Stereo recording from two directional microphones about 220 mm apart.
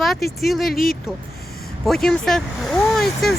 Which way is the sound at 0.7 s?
40° left (ahead or behind).